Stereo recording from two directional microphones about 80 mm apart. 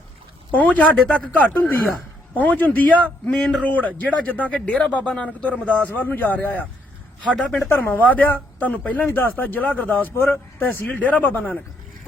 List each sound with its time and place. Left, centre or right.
0.5 s speech: centre